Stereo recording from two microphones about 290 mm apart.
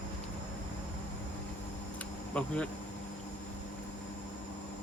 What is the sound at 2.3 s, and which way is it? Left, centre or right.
Speech, centre.